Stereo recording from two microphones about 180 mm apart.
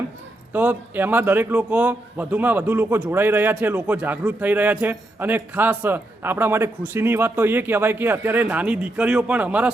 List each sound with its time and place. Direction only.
0.5 s a man's voice: 10° right (ahead or behind)